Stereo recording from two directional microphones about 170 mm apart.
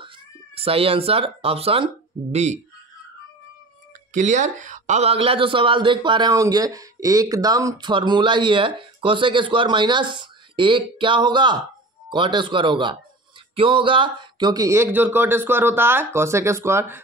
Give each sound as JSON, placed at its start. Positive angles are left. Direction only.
{"t": 0.6, "sound": "speech", "side_deg": -35}
{"t": 4.1, "sound": "speech", "side_deg": -45}